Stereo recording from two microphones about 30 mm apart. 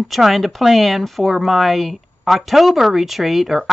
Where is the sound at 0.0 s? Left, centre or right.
Centre.